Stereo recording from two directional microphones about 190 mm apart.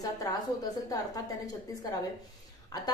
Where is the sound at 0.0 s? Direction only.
20° left (ahead or behind).